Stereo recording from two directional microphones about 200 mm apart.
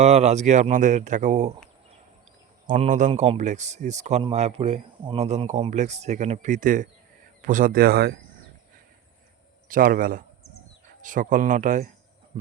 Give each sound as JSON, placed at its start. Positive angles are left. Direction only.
{"t": 0.0, "sound": "a man's voice", "side_deg": -35}
{"t": 2.6, "sound": "a man's voice", "side_deg": -40}
{"t": 9.6, "sound": "a man's voice", "side_deg": -45}